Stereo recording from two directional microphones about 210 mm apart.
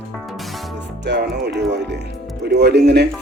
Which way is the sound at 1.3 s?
55° right (ahead or behind).